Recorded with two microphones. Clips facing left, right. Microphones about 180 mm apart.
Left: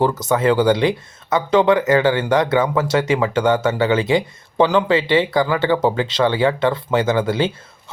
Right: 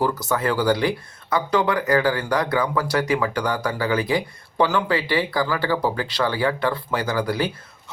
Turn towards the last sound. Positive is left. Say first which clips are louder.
# left 5 dB
turn(degrees=25)  # may be behind; listen again after turning